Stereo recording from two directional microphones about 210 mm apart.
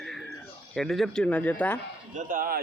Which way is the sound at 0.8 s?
Centre (ahead or behind).